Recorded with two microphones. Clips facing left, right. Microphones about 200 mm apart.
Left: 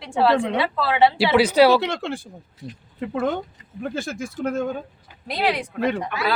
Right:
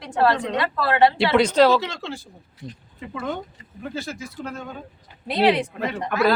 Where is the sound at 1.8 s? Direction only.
55° left (ahead or behind).